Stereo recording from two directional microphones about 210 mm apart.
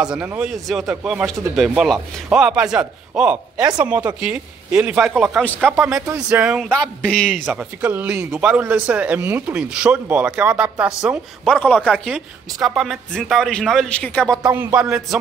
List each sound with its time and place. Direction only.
0.0 s speech: 5° right (ahead or behind)
5.7 s speech: 10° right (ahead or behind); by 7.2 s 5° left (ahead or behind)
7.4 s speech: 10° right (ahead or behind)
14.5 s speech: 10° right (ahead or behind)